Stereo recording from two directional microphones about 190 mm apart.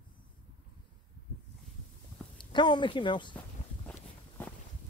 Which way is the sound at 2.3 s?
25° left (ahead or behind).